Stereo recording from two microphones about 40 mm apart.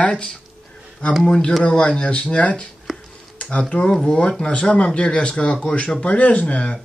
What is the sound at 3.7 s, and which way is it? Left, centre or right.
Speech, centre.